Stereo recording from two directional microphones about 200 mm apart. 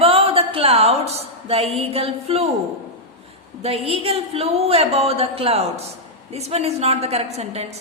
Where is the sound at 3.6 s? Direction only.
30° right (ahead or behind).